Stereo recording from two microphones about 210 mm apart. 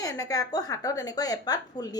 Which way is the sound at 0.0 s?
15° left (ahead or behind).